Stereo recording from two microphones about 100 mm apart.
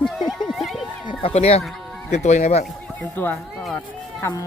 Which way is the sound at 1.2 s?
90° left.